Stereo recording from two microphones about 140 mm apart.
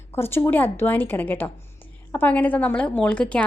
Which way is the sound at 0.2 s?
15° left (ahead or behind).